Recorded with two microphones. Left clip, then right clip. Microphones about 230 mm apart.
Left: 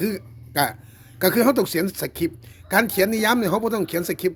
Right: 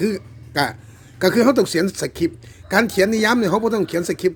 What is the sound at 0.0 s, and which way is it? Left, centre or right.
Speech, centre.